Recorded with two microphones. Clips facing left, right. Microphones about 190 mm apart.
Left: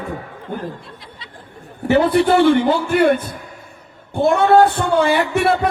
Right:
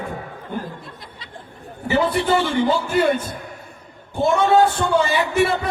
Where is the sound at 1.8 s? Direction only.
60° left (ahead or behind).